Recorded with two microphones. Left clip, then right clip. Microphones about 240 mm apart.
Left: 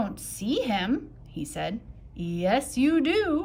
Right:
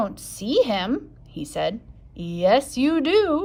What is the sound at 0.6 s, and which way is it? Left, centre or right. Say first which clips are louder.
A woman's voice: right 6 dB; centre.